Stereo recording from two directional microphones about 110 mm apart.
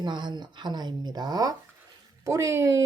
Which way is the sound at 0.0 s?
45° right (ahead or behind).